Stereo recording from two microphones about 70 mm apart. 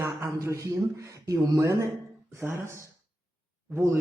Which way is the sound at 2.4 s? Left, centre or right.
Right.